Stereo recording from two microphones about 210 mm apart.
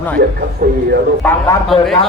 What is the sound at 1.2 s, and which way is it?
Speech, 10° left (ahead or behind).